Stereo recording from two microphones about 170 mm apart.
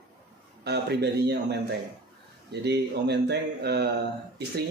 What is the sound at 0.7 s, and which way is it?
Speech, 75° right (ahead or behind).